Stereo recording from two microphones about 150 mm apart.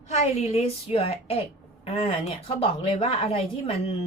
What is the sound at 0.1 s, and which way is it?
A woman's voice, 45° left (ahead or behind).